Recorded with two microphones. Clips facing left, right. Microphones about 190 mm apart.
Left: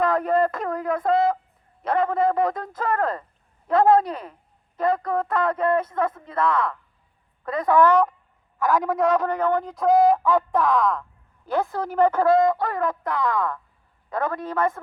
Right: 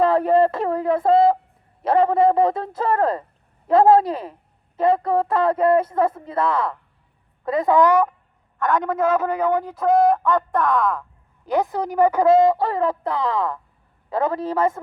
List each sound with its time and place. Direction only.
0.0 s a man's voice: 30° right (ahead or behind); by 8.0 s 15° right (ahead or behind)
8.5 s a man's voice: centre (ahead or behind)
11.4 s a woman's voice: 15° right (ahead or behind)
12.3 s a man's voice: 25° right (ahead or behind)